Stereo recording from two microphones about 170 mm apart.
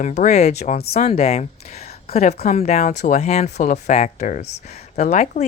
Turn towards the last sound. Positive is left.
turn(degrees=40)  # may be behind; listen again after turning